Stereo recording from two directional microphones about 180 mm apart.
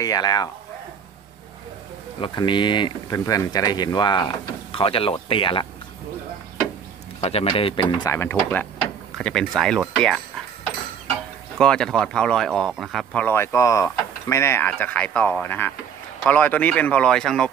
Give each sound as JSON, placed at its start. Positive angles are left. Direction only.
{"t": 0.0, "sound": "speech", "side_deg": 20}
{"t": 2.1, "sound": "speech", "side_deg": 30}
{"t": 7.2, "sound": "speech", "side_deg": 35}
{"t": 8.1, "sound": "speech", "side_deg": 15}
{"t": 11.5, "sound": "speech", "side_deg": 5}